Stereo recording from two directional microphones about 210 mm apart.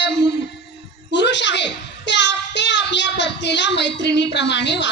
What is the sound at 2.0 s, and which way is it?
Child singing, 55° left (ahead or behind).